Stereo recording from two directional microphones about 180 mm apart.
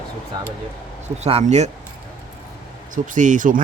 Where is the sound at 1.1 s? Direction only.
35° right (ahead or behind).